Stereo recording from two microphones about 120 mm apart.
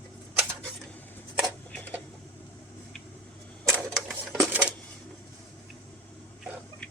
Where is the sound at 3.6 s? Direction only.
25° right (ahead or behind).